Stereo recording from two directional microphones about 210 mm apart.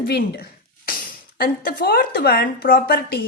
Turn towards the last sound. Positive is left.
turn(degrees=45)  # may be behind; listen again after turning